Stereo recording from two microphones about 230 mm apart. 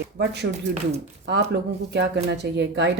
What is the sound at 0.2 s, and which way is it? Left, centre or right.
Speech, right.